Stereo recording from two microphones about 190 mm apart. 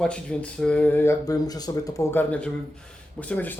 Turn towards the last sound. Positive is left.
turn(degrees=10)  # may be behind; listen again after turning